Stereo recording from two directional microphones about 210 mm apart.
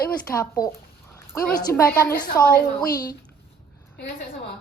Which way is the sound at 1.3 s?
10° left (ahead or behind).